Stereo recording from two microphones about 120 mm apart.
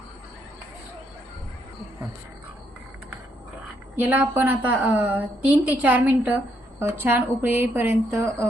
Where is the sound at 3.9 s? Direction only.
15° right (ahead or behind).